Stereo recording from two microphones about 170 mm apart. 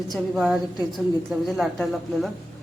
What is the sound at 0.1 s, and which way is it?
A woman's voice, centre (ahead or behind).